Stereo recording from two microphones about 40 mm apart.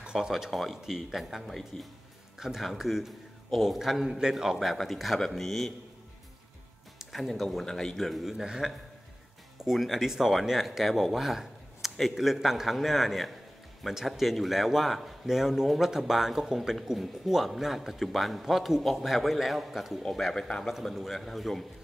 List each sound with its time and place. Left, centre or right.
0.1 s speech: centre
0.5 s a man's voice: centre
1.7 s a man's voice: centre
2.3 s a man's voice: centre
4.6 s a man's voice: centre
7.0 s speech: centre
7.6 s speech: centre
9.8 s a man's voice: centre
20.3 s a man's voice: centre
20.9 s speech: centre